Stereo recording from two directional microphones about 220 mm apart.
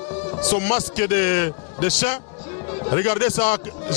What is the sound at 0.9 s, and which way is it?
A man's voice, 15° left (ahead or behind).